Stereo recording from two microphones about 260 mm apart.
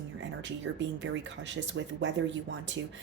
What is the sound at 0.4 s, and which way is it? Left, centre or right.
Speech, right.